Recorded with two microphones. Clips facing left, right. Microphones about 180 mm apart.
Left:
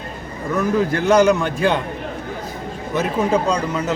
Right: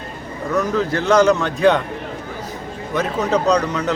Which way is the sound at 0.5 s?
10° left (ahead or behind).